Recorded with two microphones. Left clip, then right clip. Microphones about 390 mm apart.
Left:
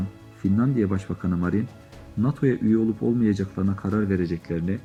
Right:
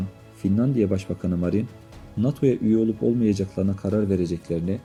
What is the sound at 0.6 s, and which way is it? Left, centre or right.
Speech, centre.